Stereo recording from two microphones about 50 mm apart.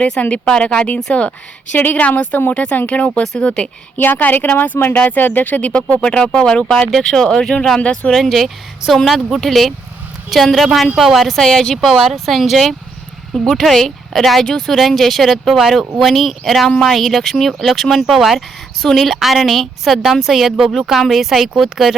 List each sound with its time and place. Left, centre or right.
0.2 s speech: left
3.9 s speech: left; by 8.1 s centre
8.1 s a woman's voice: centre
11.8 s a woman's voice: centre